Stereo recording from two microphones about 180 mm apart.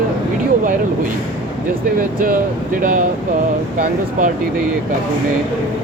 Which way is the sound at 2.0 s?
50° right (ahead or behind).